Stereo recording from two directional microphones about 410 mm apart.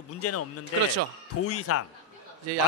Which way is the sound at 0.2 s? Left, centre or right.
Left.